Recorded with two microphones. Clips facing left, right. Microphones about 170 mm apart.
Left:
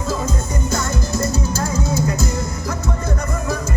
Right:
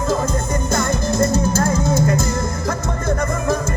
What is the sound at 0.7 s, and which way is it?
Music, 50° right (ahead or behind).